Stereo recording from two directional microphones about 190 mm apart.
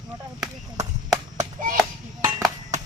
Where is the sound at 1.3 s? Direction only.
45° right (ahead or behind).